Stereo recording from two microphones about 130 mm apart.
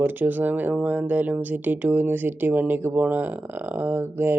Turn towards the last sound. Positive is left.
turn(degrees=-15)  # may be behind; listen again after turning